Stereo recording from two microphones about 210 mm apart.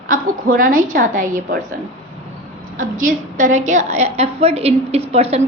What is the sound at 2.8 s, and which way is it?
A woman's voice, 40° right (ahead or behind).